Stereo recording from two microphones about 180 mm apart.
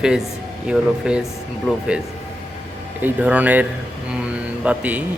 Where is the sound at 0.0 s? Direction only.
5° right (ahead or behind).